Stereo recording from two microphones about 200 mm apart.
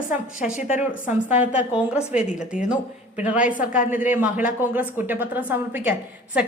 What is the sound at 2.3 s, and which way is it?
Speech, 40° left (ahead or behind).